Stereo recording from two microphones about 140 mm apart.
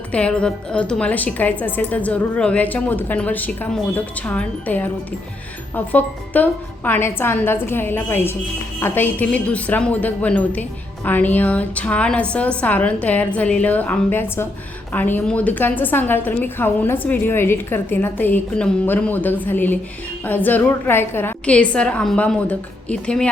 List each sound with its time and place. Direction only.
0.1 s a woman's voice: 10° left (ahead or behind)